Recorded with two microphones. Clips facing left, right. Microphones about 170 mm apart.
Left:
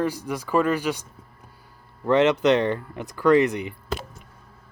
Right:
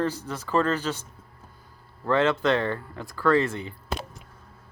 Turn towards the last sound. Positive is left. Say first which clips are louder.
# left 4 dB
turn(degrees=20)  # may be behind; listen again after turning